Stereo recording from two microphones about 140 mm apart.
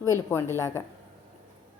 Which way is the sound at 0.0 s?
20° left (ahead or behind).